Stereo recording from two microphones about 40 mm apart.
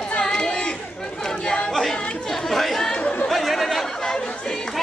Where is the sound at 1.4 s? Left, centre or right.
Centre.